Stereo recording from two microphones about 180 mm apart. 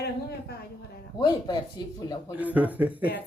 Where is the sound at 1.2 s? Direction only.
25° left (ahead or behind).